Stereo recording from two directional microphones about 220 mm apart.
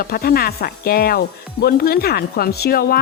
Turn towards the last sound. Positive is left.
turn(degrees=45)  # may be behind; listen again after turning